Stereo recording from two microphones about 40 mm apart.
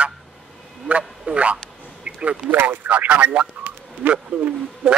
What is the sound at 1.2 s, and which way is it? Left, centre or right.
Speech, right.